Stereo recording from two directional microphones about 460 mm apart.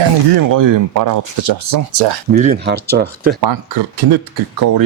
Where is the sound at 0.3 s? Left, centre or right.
Right.